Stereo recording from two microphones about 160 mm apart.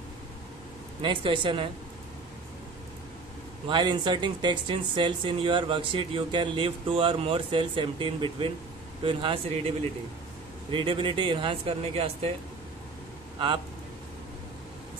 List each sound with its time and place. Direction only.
1.0 s speech: 30° right (ahead or behind)
3.6 s speech: 30° right (ahead or behind)
10.7 s speech: 30° right (ahead or behind)